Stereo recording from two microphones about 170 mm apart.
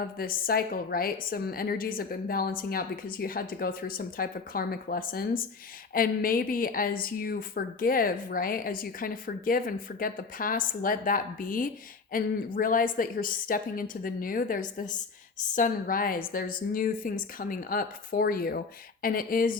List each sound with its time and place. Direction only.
0.2 s speech: 60° left (ahead or behind)